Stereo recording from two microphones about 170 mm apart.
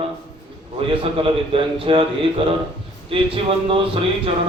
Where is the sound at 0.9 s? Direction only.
30° right (ahead or behind).